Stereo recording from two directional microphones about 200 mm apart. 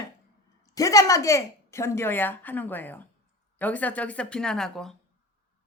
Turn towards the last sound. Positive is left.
turn(degrees=0)  # may be behind; listen again after turning